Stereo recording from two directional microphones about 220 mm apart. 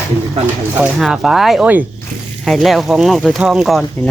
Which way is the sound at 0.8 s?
Centre (ahead or behind).